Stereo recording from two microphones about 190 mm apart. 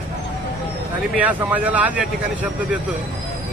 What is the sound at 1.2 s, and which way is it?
Speech, 10° right (ahead or behind).